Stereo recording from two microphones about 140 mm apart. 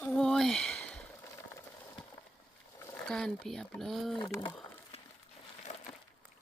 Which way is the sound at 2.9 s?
5° left (ahead or behind).